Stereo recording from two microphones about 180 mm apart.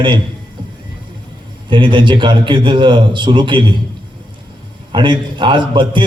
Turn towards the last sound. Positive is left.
turn(degrees=-25)  # may be behind; listen again after turning